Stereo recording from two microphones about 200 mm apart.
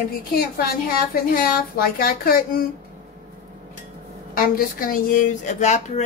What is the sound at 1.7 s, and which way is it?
Speech, 45° left (ahead or behind).